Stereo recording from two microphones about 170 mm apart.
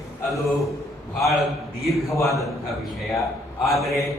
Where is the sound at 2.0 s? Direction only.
20° left (ahead or behind).